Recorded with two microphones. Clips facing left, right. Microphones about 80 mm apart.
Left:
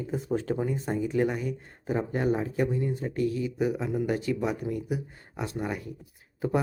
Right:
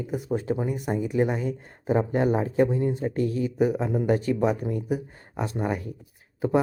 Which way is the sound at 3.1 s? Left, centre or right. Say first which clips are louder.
Right 3 dB; right.